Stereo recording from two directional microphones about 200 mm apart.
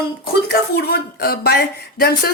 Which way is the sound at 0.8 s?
55° left (ahead or behind).